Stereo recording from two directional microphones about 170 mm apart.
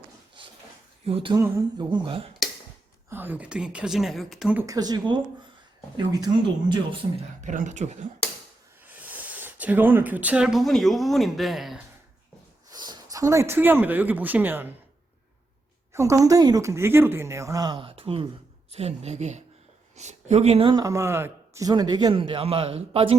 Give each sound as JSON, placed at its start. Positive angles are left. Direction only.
{"t": 1.0, "sound": "speech", "side_deg": -30}
{"t": 1.4, "sound": "speech", "side_deg": -20}
{"t": 3.1, "sound": "a woman's voice", "side_deg": -10}
{"t": 4.6, "sound": "speech", "side_deg": -20}
{"t": 7.4, "sound": "speech", "side_deg": -45}
{"t": 8.9, "sound": "speech", "side_deg": -10}
{"t": 12.7, "sound": "speech", "side_deg": -25}
{"t": 15.9, "sound": "speech", "side_deg": -15}